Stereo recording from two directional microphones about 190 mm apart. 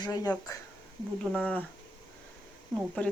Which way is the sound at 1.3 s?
5° left (ahead or behind).